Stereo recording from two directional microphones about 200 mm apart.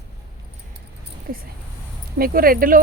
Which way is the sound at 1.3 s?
45° right (ahead or behind).